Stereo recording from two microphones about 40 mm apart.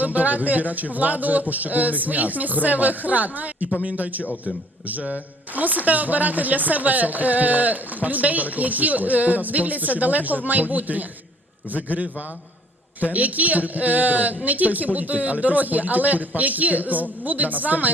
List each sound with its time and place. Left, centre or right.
0.0 s a man's voice: right
4.2 s a man's voice: left
5.5 s a man's voice: right